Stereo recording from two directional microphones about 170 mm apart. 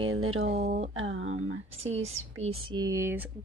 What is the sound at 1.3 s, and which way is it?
Speech, 40° right (ahead or behind).